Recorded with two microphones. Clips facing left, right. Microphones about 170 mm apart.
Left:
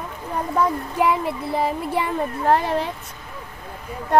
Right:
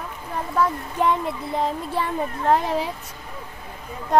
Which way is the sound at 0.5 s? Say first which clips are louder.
Left 1 dB; 10° left (ahead or behind).